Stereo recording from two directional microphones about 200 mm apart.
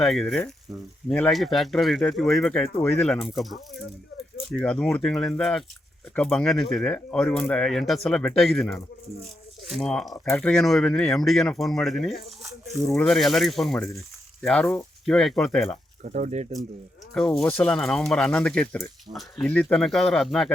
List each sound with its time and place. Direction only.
0.0 s speech: centre (ahead or behind)
16.0 s speech: 40° right (ahead or behind)
17.2 s speech: 5° left (ahead or behind)